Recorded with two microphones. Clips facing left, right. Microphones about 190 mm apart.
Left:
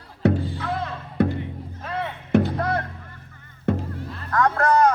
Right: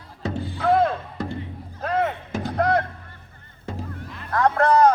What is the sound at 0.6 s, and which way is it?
Music, 55° right (ahead or behind).